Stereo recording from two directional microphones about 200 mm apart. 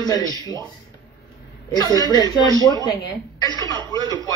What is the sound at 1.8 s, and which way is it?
Speech, 20° left (ahead or behind).